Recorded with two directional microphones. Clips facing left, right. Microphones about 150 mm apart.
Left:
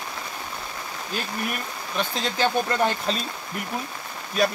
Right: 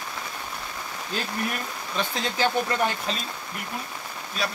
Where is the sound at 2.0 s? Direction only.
20° left (ahead or behind).